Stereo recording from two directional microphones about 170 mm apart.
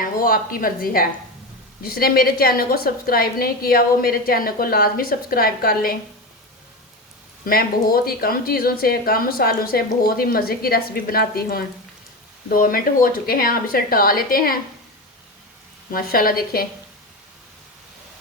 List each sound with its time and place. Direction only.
0.0 s a woman's voice: 55° left (ahead or behind)
7.4 s a woman's voice: 60° left (ahead or behind)
15.9 s a woman's voice: 60° left (ahead or behind)